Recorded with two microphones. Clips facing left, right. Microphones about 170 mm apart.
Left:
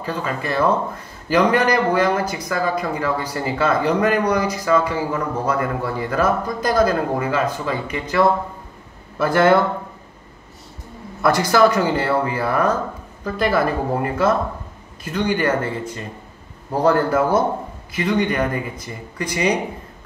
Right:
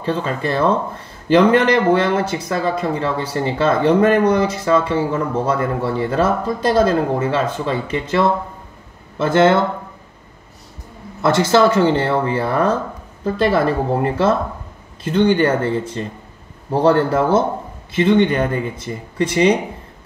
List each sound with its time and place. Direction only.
0.0 s speech: 30° right (ahead or behind)
11.2 s speech: 25° right (ahead or behind)